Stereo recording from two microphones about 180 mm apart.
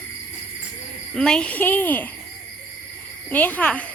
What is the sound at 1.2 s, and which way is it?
Speech, 5° left (ahead or behind).